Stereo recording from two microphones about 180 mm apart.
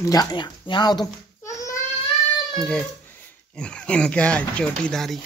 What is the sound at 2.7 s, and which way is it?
Speech, 5° left (ahead or behind).